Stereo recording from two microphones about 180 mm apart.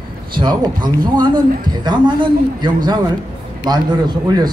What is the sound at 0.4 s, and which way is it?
A man's voice, 25° right (ahead or behind).